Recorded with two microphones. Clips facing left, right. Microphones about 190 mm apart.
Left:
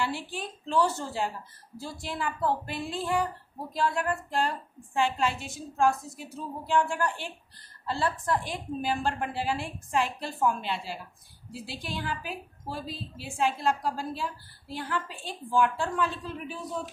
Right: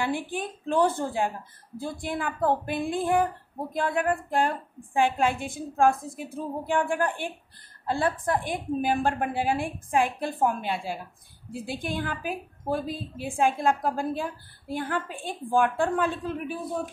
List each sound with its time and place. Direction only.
0.0 s a woman's voice: 55° right (ahead or behind)